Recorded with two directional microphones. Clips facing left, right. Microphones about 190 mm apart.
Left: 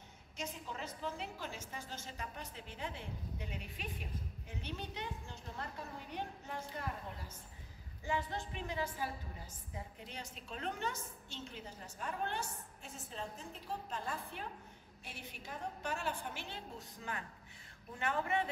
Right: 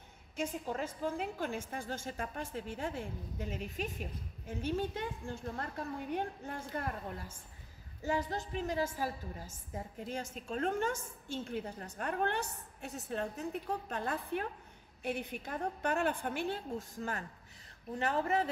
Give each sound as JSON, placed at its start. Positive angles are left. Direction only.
{"t": 0.4, "sound": "a woman's voice", "side_deg": -50}
{"t": 8.0, "sound": "a woman's voice", "side_deg": -40}